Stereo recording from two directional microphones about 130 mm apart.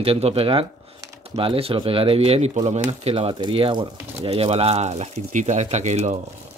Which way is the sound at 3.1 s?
40° right (ahead or behind).